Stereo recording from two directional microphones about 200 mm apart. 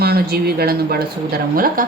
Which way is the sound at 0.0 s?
50° right (ahead or behind).